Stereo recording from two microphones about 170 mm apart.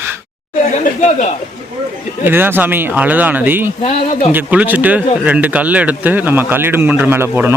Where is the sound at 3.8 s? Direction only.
40° left (ahead or behind).